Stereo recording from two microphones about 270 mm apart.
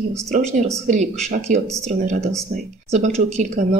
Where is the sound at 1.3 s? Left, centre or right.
Right.